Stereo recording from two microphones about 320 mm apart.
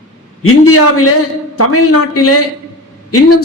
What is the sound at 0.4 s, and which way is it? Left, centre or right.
A man's voice, left.